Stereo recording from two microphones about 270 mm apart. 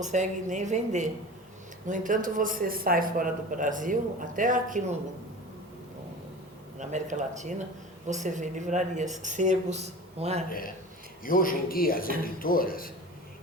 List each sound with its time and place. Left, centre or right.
0.0 s a woman's voice: right
6.7 s a woman's voice: right
11.2 s speech: left